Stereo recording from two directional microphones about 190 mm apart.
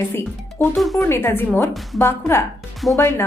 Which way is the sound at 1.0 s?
10° left (ahead or behind).